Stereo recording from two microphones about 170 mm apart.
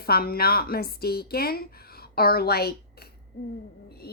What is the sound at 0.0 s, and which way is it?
A woman's voice, 65° left (ahead or behind).